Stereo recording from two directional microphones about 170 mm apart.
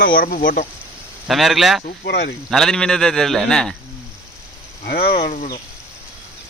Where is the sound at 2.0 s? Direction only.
75° left (ahead or behind).